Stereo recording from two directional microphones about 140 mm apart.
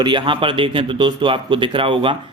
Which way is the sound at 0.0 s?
35° right (ahead or behind).